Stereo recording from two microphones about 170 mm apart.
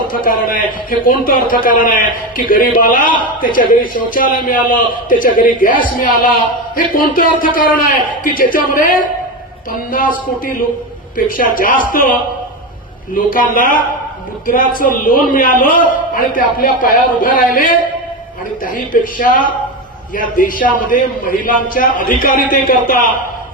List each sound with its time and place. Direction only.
0.1 s a man's voice: 55° left (ahead or behind)
13.1 s a man's voice: 55° left (ahead or behind)
18.9 s a man's voice: 55° left (ahead or behind)
20.1 s a man's voice: 55° left (ahead or behind)